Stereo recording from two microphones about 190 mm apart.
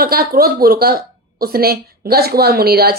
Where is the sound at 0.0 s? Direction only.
50° right (ahead or behind).